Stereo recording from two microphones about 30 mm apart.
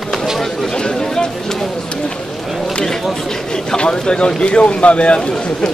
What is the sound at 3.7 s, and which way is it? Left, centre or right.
Speech, left.